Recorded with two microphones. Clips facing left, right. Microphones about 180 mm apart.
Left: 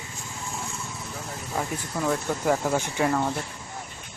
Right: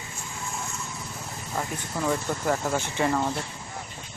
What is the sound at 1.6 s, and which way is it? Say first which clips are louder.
Speech: left 1 dB; centre (ahead or behind).